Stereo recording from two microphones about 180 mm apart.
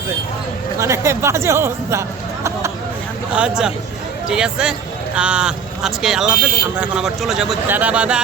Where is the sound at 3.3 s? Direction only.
5° right (ahead or behind).